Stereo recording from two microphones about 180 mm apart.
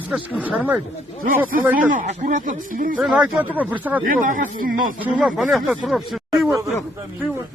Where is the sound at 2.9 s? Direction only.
5° right (ahead or behind).